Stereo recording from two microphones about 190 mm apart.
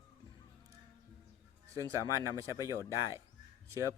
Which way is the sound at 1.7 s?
15° right (ahead or behind).